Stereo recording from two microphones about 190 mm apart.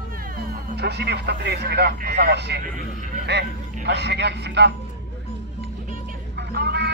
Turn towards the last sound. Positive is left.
turn(degrees=-60)  # may be behind; listen again after turning